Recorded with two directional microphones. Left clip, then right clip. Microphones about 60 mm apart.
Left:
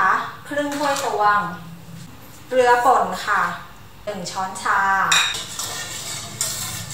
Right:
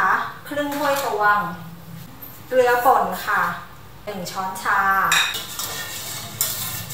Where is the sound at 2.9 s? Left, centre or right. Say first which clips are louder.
Even; centre.